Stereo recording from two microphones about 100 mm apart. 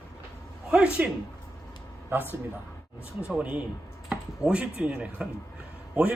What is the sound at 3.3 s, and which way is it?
A man's voice, 10° right (ahead or behind).